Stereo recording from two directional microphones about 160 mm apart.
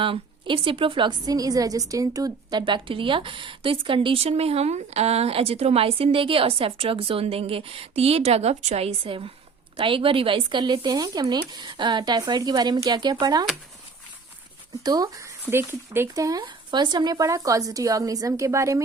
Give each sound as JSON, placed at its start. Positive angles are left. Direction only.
{"t": 0.0, "sound": "a woman's voice", "side_deg": -35}
{"t": 14.8, "sound": "speech", "side_deg": -25}